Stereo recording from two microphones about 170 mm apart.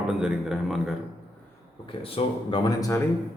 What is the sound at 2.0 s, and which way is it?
Speech, 35° left (ahead or behind).